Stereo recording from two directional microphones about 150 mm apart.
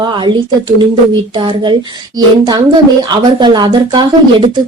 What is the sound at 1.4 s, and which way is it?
A woman's voice, 35° right (ahead or behind).